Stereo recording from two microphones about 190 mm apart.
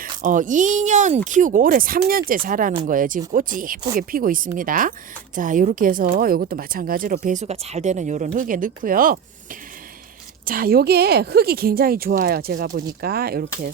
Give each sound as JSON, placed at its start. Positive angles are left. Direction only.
{"t": 0.0, "sound": "speech", "side_deg": -45}
{"t": 10.4, "sound": "speech", "side_deg": -50}